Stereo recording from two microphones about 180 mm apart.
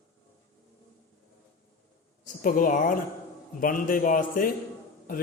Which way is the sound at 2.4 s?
50° left (ahead or behind).